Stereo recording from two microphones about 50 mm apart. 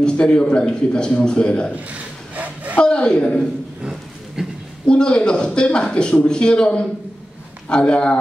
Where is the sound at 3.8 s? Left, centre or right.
Centre.